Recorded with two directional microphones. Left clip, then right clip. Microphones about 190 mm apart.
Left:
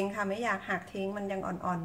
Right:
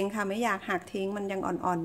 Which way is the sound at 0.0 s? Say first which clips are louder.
Right 2 dB; 50° right (ahead or behind).